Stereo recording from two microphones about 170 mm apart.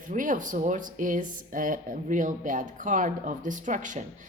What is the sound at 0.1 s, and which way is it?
A woman's voice, 50° right (ahead or behind).